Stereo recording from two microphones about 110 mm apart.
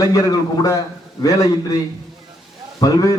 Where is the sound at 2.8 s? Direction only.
35° left (ahead or behind).